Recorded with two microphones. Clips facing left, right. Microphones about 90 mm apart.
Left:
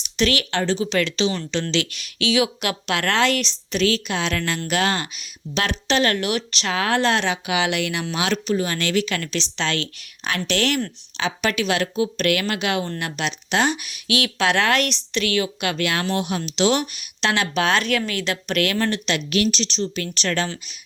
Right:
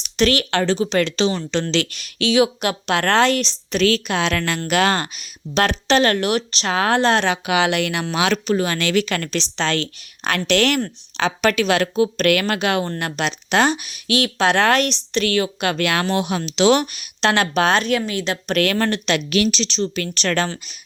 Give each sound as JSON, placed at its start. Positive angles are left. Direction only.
{"t": 0.2, "sound": "a woman's voice", "side_deg": -40}
{"t": 0.5, "sound": "speech", "side_deg": -75}
{"t": 0.8, "sound": "a woman's voice", "side_deg": -35}
{"t": 3.8, "sound": "speech", "side_deg": -50}
{"t": 4.2, "sound": "speech", "side_deg": -70}
{"t": 4.9, "sound": "a woman's voice", "side_deg": -45}
{"t": 7.3, "sound": "speech", "side_deg": -55}
{"t": 9.0, "sound": "speech", "side_deg": -45}
{"t": 10.3, "sound": "speech", "side_deg": -60}
{"t": 13.8, "sound": "a woman's voice", "side_deg": -35}
{"t": 16.6, "sound": "speech", "side_deg": -65}
{"t": 17.2, "sound": "a woman's voice", "side_deg": -45}
{"t": 18.4, "sound": "speech", "side_deg": -40}
{"t": 19.3, "sound": "speech", "side_deg": -90}